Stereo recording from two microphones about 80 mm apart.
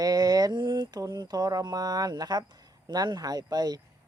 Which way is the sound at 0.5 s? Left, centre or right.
Right.